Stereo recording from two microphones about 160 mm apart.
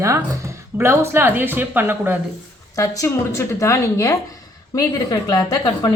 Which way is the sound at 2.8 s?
20° left (ahead or behind).